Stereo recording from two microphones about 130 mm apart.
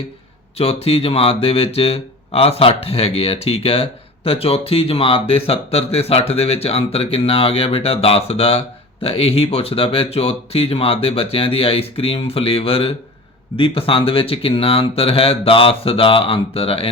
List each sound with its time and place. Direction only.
0.5 s speech: 50° left (ahead or behind)